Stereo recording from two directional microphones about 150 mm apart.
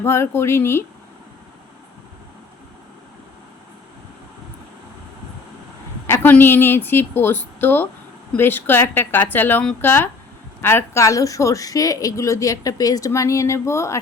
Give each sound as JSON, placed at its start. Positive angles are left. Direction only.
{"t": 0.0, "sound": "a woman's voice", "side_deg": 15}
{"t": 6.1, "sound": "a woman's voice", "side_deg": 15}